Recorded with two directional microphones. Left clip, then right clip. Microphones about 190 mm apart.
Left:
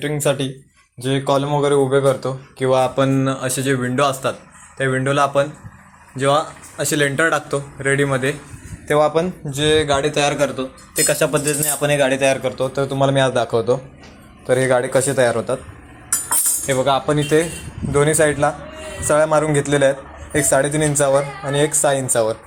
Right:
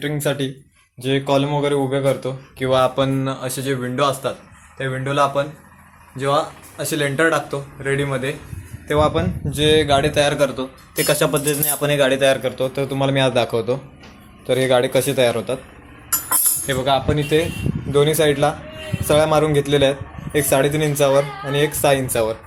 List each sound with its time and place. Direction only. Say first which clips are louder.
0.0 s speech: left 2 dB; centre (ahead or behind)
9.5 s speech: right 2 dB; 10° right (ahead or behind)
16.6 s speech: left 2 dB; centre (ahead or behind)